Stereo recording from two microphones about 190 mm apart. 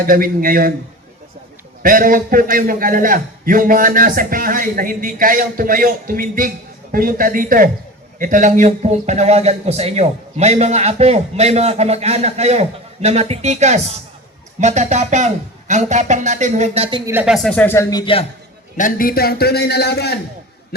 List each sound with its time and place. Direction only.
0.0 s a man's voice: 50° right (ahead or behind)
1.8 s a man's voice: 45° right (ahead or behind)
17.1 s speech: 10° right (ahead or behind)
17.3 s speech: 5° left (ahead or behind)
18.0 s a man's voice: 30° left (ahead or behind)
18.8 s a man's voice: 45° left (ahead or behind)